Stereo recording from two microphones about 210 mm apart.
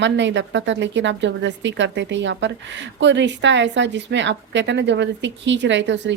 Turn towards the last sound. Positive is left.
turn(degrees=-55)  # may be behind; listen again after turning